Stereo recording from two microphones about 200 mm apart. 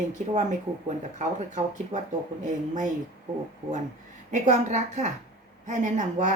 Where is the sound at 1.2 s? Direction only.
35° right (ahead or behind).